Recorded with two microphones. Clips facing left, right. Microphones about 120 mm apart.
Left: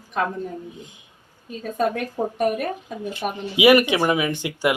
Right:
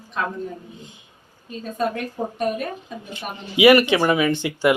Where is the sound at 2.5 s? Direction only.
60° left (ahead or behind).